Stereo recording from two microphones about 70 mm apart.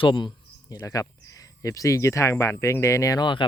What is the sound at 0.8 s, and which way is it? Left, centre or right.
Speech, left.